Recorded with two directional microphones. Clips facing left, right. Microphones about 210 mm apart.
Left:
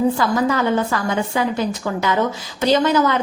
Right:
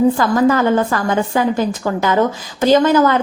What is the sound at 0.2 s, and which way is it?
A woman's voice, 50° right (ahead or behind).